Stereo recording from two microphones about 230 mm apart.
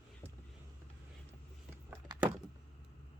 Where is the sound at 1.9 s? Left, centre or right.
Centre.